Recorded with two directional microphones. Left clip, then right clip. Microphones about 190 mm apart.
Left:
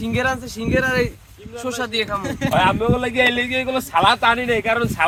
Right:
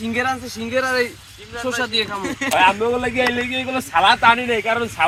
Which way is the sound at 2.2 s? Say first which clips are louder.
Right 1 dB; 70° left (ahead or behind).